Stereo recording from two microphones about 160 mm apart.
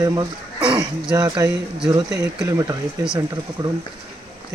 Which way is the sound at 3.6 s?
20° right (ahead or behind).